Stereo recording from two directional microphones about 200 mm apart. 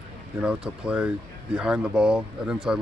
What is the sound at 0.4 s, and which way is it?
Speech, 5° right (ahead or behind).